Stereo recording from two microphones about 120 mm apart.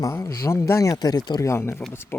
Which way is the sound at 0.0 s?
25° left (ahead or behind).